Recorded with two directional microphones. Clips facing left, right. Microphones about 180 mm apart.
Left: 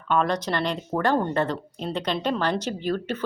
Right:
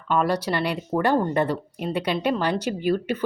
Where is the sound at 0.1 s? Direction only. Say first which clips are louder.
Right 1 dB; 5° right (ahead or behind).